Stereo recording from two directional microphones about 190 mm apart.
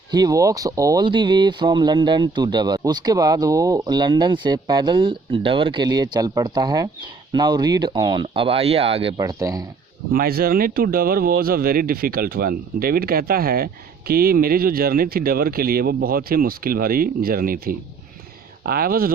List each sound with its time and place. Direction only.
0.1 s speech: 20° right (ahead or behind)
10.1 s speech: 50° right (ahead or behind)